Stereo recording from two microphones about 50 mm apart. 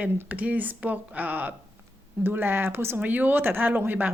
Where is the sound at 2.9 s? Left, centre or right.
Right.